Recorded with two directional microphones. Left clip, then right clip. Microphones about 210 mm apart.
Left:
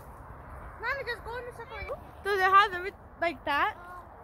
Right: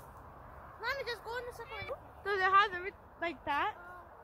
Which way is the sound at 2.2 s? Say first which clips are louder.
Left 6 dB; 45° left (ahead or behind).